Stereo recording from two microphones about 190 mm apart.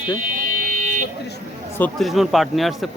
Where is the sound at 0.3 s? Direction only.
45° right (ahead or behind).